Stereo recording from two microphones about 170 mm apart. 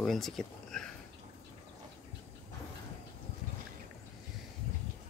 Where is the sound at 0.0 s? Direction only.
Centre (ahead or behind).